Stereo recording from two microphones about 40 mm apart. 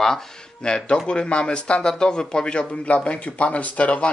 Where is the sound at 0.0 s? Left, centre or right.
Centre.